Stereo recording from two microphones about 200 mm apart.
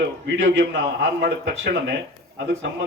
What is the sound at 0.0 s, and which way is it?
A man's voice, 60° right (ahead or behind).